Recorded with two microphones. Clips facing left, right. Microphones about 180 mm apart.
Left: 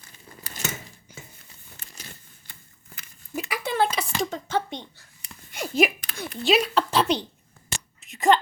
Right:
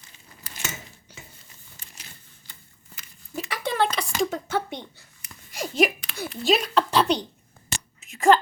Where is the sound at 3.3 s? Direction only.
5° left (ahead or behind).